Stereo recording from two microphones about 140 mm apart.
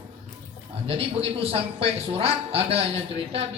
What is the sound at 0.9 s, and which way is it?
A man's voice, 45° right (ahead or behind).